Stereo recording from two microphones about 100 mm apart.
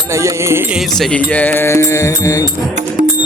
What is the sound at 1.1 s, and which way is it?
Music, 15° left (ahead or behind).